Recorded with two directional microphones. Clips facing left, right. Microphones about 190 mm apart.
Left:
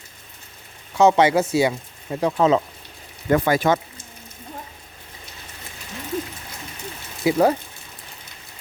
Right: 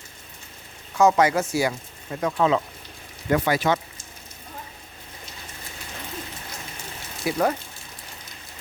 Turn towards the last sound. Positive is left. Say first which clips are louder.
# left 7 dB
turn(degrees=25)  # may be behind; listen again after turning